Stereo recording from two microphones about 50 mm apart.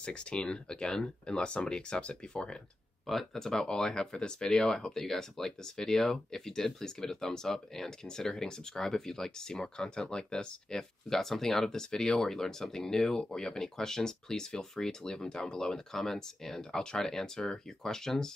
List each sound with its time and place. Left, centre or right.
0.0 s speech: centre
3.1 s speech: centre